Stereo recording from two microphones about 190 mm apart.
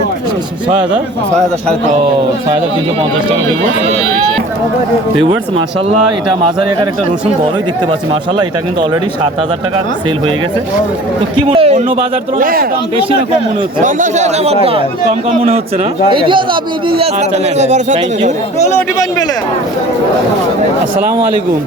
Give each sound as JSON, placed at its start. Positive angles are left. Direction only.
{"t": 11.3, "sound": "a sound", "side_deg": -30}
{"t": 12.4, "sound": "speech", "side_deg": -50}
{"t": 13.8, "sound": "a man's voice", "side_deg": -40}
{"t": 16.1, "sound": "a man's voice", "side_deg": -25}